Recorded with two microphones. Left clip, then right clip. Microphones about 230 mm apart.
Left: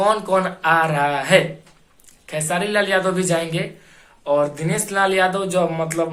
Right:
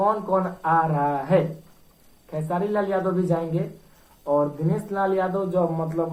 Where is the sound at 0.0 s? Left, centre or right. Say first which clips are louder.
Left 4 dB; left.